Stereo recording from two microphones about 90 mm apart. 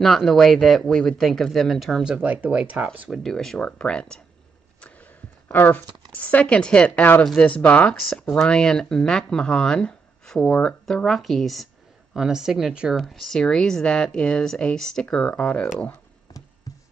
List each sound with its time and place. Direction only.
0.0 s speech: 5° left (ahead or behind)
2.1 s speech: 15° right (ahead or behind)
3.1 s speech: 5° left (ahead or behind)
5.5 s speech: 20° left (ahead or behind)